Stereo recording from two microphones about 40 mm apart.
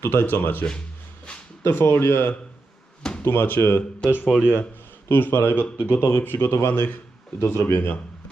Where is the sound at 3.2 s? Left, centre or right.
Left.